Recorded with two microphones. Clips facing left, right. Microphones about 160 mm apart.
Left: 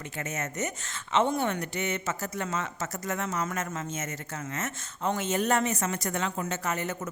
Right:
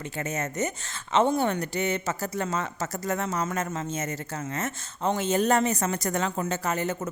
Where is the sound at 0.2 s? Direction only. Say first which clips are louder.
Right 4 dB; 30° right (ahead or behind).